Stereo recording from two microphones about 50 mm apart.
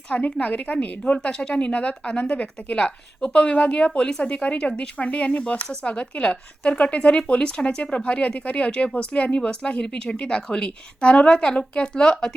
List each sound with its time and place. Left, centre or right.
0.1 s a woman's voice: left